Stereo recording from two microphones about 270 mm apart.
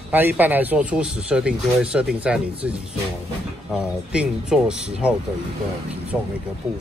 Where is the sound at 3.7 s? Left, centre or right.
Centre.